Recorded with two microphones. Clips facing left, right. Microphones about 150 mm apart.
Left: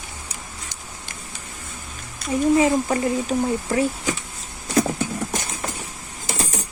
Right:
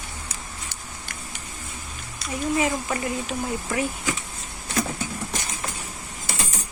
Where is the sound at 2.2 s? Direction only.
50° left (ahead or behind).